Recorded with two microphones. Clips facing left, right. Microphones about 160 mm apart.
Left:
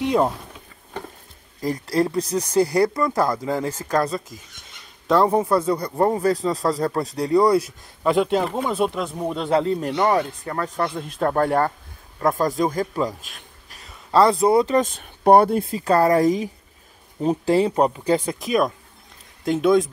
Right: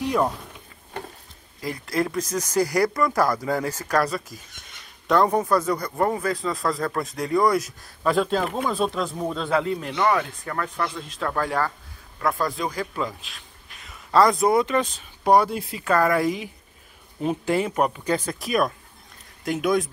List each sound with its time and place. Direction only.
1.6 s speech: 35° left (ahead or behind); by 9.5 s 15° left (ahead or behind)
9.5 s speech: 30° left (ahead or behind)
10.8 s a man's voice: 50° left (ahead or behind)
14.9 s speech: 55° left (ahead or behind)
15.8 s speech: 35° left (ahead or behind)